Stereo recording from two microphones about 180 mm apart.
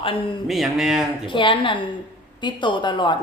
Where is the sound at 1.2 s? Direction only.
30° left (ahead or behind).